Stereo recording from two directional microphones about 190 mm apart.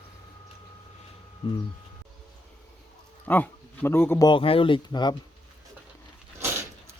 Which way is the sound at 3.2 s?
10° left (ahead or behind).